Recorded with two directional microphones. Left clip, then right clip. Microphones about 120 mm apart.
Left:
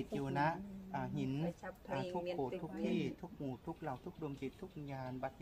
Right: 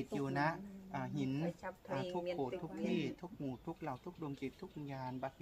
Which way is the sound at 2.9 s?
20° left (ahead or behind).